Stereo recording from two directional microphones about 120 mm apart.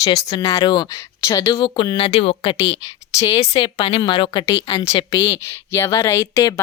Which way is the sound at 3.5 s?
45° left (ahead or behind).